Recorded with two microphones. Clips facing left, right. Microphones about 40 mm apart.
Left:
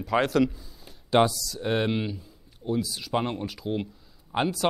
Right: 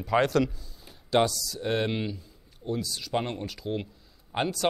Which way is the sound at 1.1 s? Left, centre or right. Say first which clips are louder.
Left 3 dB; centre.